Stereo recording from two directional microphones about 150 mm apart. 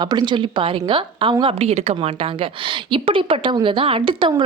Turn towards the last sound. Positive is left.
turn(degrees=-35)  # may be behind; listen again after turning